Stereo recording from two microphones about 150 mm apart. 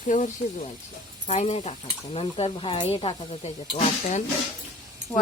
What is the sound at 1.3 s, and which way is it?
Speech, 45° left (ahead or behind).